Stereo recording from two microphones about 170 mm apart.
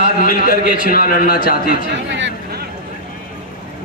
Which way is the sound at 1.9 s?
90° right.